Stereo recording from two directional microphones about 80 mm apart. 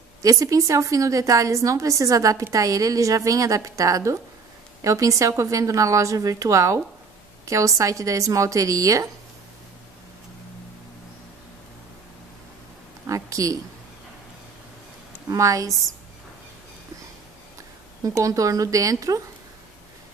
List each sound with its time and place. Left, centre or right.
0.2 s a woman's voice: right
13.0 s speech: right
15.2 s a woman's voice: right
18.0 s a woman's voice: right